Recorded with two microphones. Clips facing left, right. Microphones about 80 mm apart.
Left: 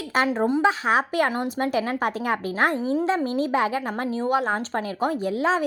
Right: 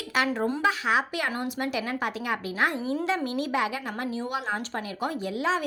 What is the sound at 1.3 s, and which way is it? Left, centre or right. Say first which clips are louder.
Speech: left 5 dB; left.